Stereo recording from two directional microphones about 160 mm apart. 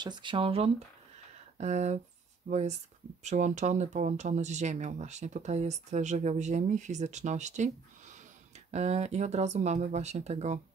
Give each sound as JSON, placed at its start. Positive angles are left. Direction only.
{"t": 0.0, "sound": "speech", "side_deg": -30}